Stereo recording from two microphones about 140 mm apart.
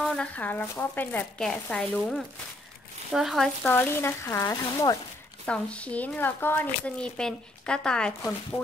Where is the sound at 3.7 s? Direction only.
15° left (ahead or behind).